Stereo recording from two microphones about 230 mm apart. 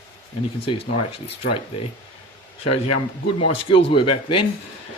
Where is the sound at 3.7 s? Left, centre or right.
Left.